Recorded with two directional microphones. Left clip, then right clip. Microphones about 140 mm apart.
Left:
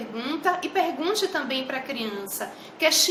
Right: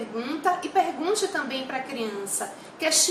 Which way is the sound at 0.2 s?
15° left (ahead or behind).